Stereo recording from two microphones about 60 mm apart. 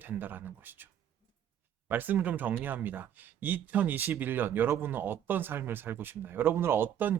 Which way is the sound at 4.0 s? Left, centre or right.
Right.